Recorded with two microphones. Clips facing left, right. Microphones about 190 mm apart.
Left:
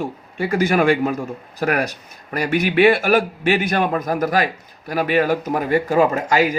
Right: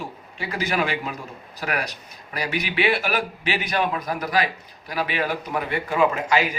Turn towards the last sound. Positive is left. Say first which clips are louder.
# left 4 dB
turn(degrees=40)  # may be behind; listen again after turning